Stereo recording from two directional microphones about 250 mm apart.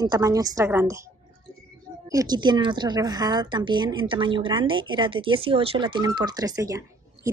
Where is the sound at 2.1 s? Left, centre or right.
Centre.